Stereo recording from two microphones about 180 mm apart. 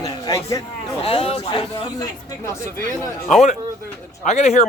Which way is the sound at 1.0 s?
30° left (ahead or behind).